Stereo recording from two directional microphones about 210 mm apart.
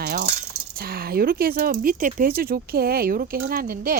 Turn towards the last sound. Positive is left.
turn(degrees=-40)  # may be behind; listen again after turning